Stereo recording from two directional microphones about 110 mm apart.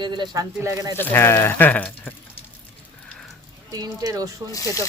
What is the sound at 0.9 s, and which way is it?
Speech, 20° left (ahead or behind).